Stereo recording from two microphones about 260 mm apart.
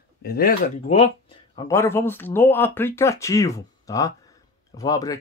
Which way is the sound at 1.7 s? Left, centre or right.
Centre.